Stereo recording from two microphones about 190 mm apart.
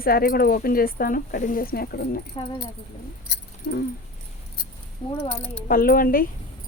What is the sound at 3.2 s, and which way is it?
Keys jangling, 60° left (ahead or behind).